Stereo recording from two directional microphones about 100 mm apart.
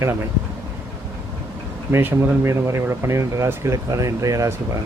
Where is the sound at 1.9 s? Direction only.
25° right (ahead or behind).